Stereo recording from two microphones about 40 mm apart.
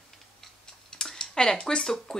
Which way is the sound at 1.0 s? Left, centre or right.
Centre.